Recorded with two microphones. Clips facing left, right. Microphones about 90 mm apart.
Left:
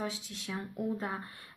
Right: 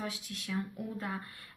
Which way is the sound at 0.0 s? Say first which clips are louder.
Left 2 dB; 25° left (ahead or behind).